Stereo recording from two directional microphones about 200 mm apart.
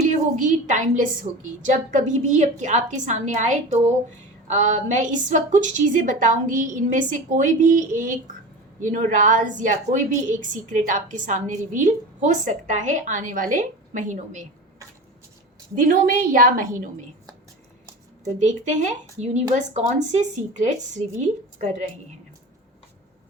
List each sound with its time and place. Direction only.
0.1 s a woman's voice: 40° right (ahead or behind)
15.7 s a woman's voice: 45° right (ahead or behind)
18.3 s a woman's voice: 35° right (ahead or behind)